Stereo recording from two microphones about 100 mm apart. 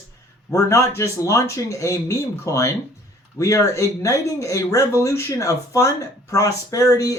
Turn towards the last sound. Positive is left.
turn(degrees=30)  # may be behind; listen again after turning